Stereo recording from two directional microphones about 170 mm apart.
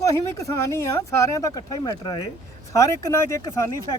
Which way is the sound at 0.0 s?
20° left (ahead or behind).